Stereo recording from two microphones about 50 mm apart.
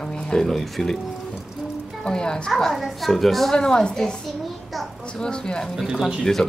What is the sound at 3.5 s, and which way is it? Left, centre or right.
Speech, centre.